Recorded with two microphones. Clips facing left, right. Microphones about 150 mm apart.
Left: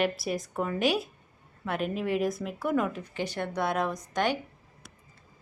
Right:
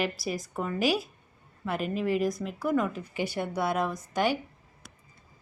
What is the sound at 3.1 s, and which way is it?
A woman's voice, 10° right (ahead or behind).